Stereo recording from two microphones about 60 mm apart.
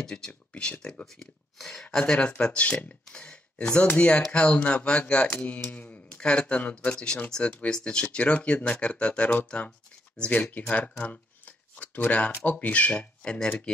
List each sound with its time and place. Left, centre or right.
0.0 s speech: centre
2.1 s speech: left